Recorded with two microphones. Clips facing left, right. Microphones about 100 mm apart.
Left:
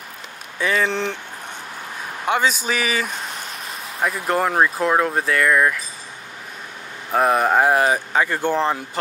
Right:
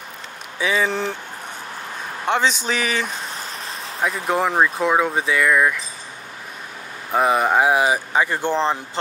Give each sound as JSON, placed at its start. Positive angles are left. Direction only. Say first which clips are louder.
{"t": 0.6, "sound": "speech", "louder": "even", "side_deg": 0}
{"t": 2.2, "sound": "speech", "louder": "even", "side_deg": 5}
{"t": 7.1, "sound": "speech", "louder": "even", "side_deg": 0}